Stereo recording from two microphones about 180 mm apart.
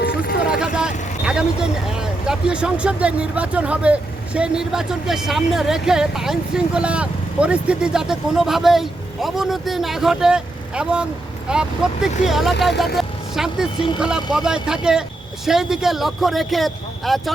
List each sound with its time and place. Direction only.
0.0 s a sound: 55° left (ahead or behind)
0.5 s vehicle: 5° right (ahead or behind)
1.9 s speech: 5° right (ahead or behind)